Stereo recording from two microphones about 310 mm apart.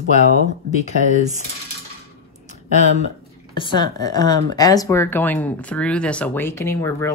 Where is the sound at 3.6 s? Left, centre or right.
Centre.